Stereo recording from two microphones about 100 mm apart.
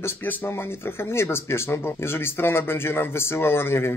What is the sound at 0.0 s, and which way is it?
Speech, 20° left (ahead or behind).